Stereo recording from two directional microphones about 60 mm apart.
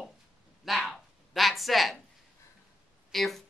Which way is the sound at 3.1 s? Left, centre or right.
Centre.